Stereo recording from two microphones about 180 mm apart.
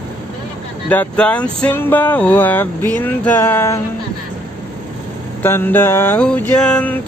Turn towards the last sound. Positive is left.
turn(degrees=10)  # may be behind; listen again after turning